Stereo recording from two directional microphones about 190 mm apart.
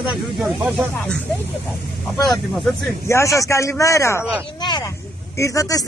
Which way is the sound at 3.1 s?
15° left (ahead or behind).